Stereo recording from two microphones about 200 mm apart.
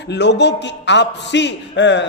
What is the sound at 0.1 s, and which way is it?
A man's voice, 60° left (ahead or behind).